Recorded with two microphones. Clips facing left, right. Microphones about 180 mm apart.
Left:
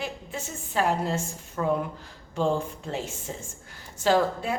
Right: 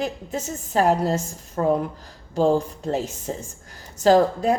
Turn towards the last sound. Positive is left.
turn(degrees=-40)  # may be behind; listen again after turning